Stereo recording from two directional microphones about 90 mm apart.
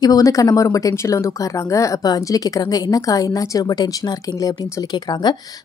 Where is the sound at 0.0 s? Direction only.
40° left (ahead or behind).